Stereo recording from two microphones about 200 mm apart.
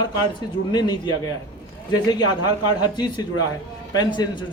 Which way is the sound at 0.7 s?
20° left (ahead or behind).